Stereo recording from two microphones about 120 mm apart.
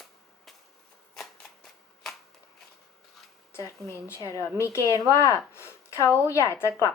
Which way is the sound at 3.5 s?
25° left (ahead or behind).